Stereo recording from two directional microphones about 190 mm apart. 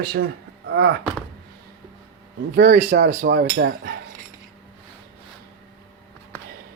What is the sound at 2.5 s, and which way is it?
Speech, 40° right (ahead or behind).